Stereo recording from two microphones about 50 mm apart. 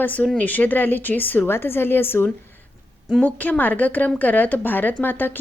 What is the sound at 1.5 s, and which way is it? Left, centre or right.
Speech, left.